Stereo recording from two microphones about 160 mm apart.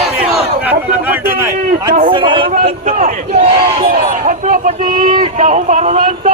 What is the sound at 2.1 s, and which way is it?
Speech, 30° right (ahead or behind).